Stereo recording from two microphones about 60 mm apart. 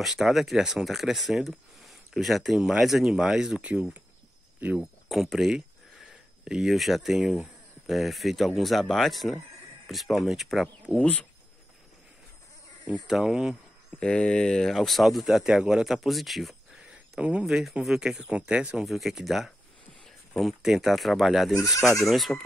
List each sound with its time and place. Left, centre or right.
0.0 s speech: centre
4.6 s speech: right
5.0 s speech: centre
13.0 s speech: centre
13.9 s speech: centre
14.8 s speech: centre
15.5 s speech: centre
15.8 s speech: centre
17.2 s speech: centre
18.9 s speech: centre